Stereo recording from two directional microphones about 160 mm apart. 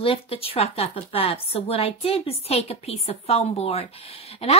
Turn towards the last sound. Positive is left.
turn(degrees=40)  # may be behind; listen again after turning